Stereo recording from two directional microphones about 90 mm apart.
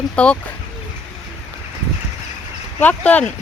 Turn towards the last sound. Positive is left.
turn(degrees=15)  # may be behind; listen again after turning